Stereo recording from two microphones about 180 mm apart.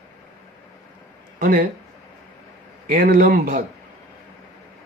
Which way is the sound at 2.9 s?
55° right (ahead or behind).